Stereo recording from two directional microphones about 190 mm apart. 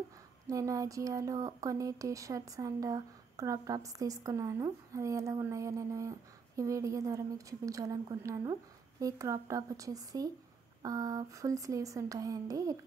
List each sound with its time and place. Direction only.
0.5 s speech: 15° right (ahead or behind)